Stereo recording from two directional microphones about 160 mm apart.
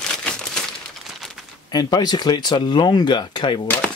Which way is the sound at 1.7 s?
25° left (ahead or behind).